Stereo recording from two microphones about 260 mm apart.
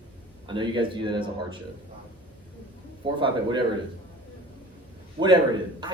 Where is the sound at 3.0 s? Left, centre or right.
Centre.